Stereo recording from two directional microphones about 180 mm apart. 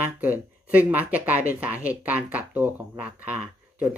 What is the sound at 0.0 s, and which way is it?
Speech, 10° right (ahead or behind).